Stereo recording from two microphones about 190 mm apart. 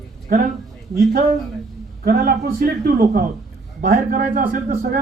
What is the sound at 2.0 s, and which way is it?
A man's voice, 55° right (ahead or behind).